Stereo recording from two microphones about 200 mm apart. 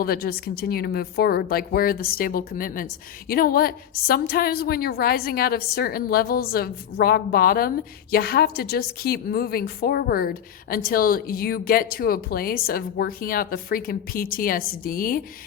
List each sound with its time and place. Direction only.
0.0 s a woman's voice: 50° left (ahead or behind)